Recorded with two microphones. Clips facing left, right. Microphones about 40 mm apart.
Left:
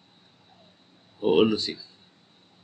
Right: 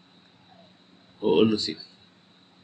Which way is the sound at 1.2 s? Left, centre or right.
Centre.